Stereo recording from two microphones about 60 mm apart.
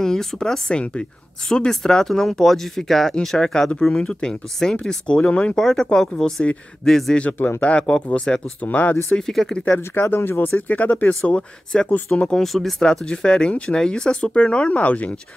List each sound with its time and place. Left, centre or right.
0.0 s speech: centre
5.6 s a man's voice: centre
7.6 s speech: centre
8.5 s speech: left
9.1 s speech: centre
9.8 s speech: left